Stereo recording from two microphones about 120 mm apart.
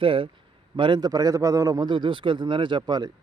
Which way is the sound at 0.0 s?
45° right (ahead or behind).